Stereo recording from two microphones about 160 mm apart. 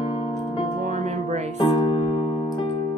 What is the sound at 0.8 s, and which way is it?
Music, 50° right (ahead or behind).